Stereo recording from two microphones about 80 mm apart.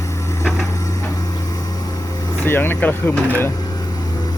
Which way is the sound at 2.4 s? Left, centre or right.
Left.